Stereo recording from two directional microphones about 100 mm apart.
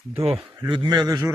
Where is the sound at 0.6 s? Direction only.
45° right (ahead or behind).